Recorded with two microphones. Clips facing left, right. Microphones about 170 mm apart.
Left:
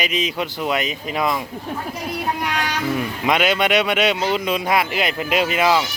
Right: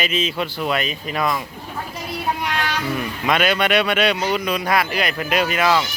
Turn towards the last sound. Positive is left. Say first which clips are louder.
# left 1 dB
turn(degrees=15)  # may be behind; listen again after turning